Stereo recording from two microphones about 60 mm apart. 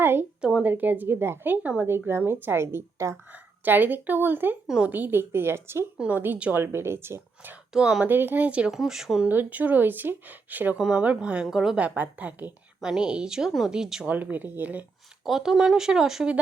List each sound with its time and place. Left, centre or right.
0.0 s a woman's voice: right
3.3 s speech: right
6.0 s a woman's voice: right
6.5 s speech: right
7.7 s speech: centre
8.0 s speech: right
8.4 s a woman's voice: right
8.7 s speech: centre
9.3 s speech: right
10.8 s a woman's voice: centre
11.8 s a woman's voice: right
12.8 s speech: centre
14.1 s a woman's voice: right
15.2 s speech: centre